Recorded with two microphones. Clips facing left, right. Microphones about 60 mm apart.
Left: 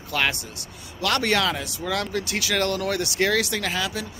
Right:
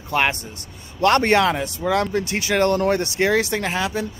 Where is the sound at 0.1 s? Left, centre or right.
Right.